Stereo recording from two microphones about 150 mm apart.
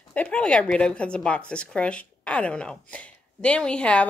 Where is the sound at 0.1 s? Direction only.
10° left (ahead or behind).